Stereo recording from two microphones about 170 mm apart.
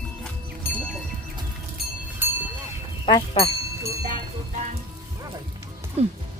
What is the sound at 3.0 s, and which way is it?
Speech, 30° left (ahead or behind).